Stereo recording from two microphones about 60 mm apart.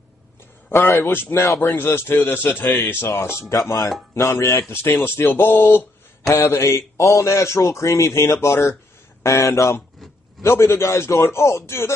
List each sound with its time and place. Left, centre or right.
0.7 s a man's voice: left
1.3 s a man's voice: left
1.8 s a man's voice: left
3.5 s speech: left
4.1 s a man's voice: left
6.2 s a man's voice: left